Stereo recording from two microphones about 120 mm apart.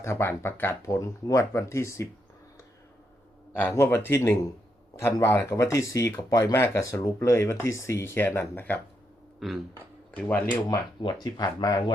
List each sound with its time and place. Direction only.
0.0 s speech: 20° left (ahead or behind)
3.5 s speech: 20° left (ahead or behind)
9.4 s speech: centre (ahead or behind)
9.7 s speech: 15° left (ahead or behind)
10.7 s speech: 35° left (ahead or behind)